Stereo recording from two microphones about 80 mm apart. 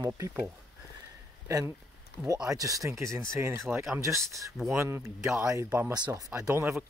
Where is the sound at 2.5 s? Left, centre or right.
Right.